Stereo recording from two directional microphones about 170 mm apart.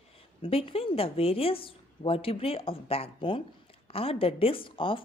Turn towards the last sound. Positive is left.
turn(degrees=30)  # may be behind; listen again after turning